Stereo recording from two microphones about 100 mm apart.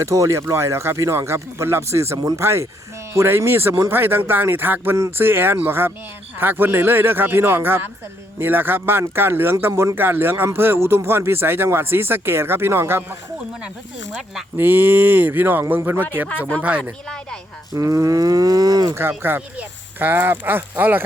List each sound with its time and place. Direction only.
0.0 s speech: 30° right (ahead or behind)
14.5 s speech: 20° right (ahead or behind)
17.7 s cattle: 30° right (ahead or behind)
18.9 s speech: 25° right (ahead or behind)